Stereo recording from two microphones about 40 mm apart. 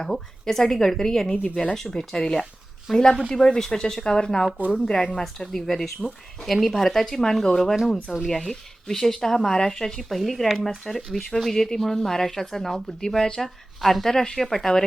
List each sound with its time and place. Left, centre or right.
0.0 s speech: centre